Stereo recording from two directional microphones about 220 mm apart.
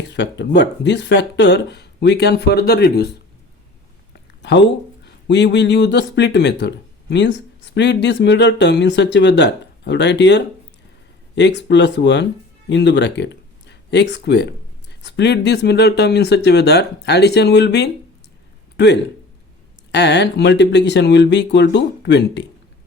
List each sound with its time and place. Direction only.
0.1 s speech: 50° left (ahead or behind)
4.4 s speech: 50° left (ahead or behind)
19.9 s speech: 50° left (ahead or behind)